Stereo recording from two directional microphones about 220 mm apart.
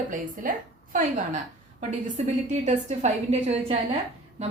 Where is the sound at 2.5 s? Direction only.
30° right (ahead or behind).